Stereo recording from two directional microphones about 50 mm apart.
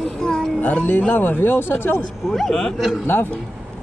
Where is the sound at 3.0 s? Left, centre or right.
Left.